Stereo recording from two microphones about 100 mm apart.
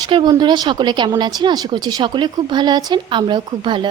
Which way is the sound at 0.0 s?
50° right (ahead or behind).